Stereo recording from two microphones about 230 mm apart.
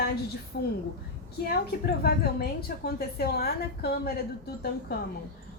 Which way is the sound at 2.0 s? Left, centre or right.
Left.